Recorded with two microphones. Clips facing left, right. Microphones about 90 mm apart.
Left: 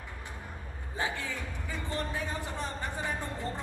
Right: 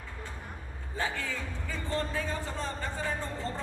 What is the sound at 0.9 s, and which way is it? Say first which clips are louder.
Speech: right 1 dB; 15° left (ahead or behind).